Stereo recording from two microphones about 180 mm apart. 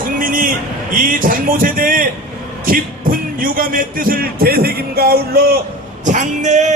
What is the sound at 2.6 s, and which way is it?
Music, 50° right (ahead or behind).